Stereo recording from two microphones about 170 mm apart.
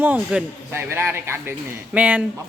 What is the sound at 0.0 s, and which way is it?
A man's voice, 10° right (ahead or behind).